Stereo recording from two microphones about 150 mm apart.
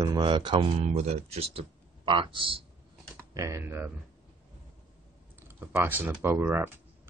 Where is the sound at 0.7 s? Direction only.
45° right (ahead or behind).